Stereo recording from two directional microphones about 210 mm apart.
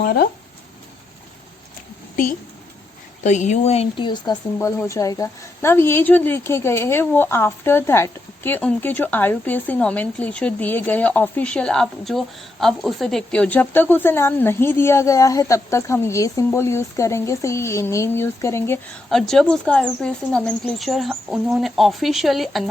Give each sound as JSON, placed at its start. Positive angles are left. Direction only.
{"t": 0.0, "sound": "speech", "side_deg": 45}
{"t": 3.2, "sound": "a woman's voice", "side_deg": 35}